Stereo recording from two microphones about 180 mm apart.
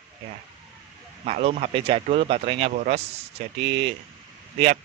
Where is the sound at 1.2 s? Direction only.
40° right (ahead or behind).